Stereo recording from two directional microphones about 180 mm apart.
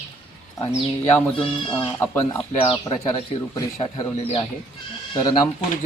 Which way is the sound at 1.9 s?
10° left (ahead or behind).